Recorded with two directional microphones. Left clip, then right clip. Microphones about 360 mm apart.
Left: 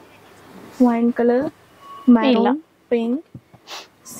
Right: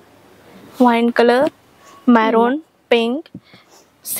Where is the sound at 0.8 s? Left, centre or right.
Centre.